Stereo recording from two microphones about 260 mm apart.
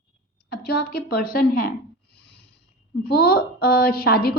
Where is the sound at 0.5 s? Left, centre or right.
Left.